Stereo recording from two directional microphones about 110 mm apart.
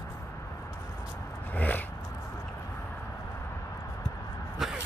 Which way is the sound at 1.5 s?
15° left (ahead or behind).